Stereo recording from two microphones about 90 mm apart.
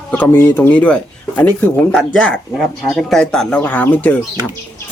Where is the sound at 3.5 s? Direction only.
15° left (ahead or behind).